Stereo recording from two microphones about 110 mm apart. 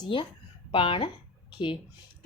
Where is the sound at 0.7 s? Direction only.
55° left (ahead or behind).